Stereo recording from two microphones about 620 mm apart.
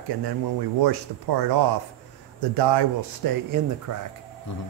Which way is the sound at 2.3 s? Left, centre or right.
Right.